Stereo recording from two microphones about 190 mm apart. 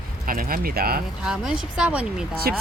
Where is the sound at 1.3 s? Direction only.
5° right (ahead or behind).